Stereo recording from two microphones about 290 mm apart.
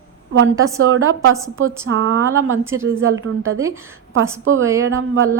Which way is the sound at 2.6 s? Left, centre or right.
Centre.